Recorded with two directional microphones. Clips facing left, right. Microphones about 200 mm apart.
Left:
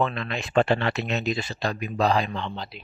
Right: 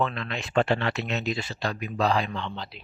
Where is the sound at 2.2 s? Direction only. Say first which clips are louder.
Left 2 dB; 35° left (ahead or behind).